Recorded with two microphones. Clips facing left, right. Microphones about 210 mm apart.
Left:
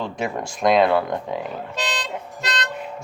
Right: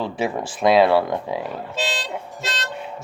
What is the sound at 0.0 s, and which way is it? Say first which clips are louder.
Speech: right 2 dB; 5° right (ahead or behind).